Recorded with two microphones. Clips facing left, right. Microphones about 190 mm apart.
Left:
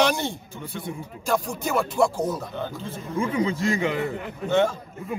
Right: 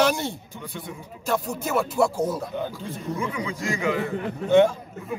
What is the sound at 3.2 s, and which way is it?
Speech, 30° left (ahead or behind).